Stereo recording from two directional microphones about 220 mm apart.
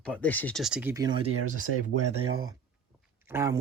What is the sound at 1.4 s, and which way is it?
Speech, 75° right (ahead or behind).